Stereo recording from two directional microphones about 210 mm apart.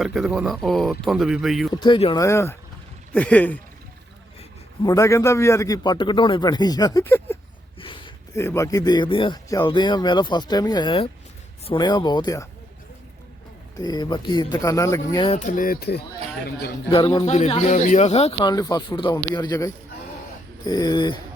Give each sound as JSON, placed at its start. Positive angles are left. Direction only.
{"t": 0.0, "sound": "speech", "side_deg": 0}
{"t": 1.8, "sound": "speech", "side_deg": 25}
{"t": 2.2, "sound": "speech", "side_deg": 15}
{"t": 4.4, "sound": "a man's voice", "side_deg": 20}
{"t": 7.8, "sound": "a sound", "side_deg": 25}
{"t": 8.4, "sound": "speech", "side_deg": 15}
{"t": 13.7, "sound": "speech", "side_deg": 20}
{"t": 15.4, "sound": "speech", "side_deg": 35}
{"t": 16.9, "sound": "speech", "side_deg": 25}
{"t": 18.3, "sound": "speech", "side_deg": 15}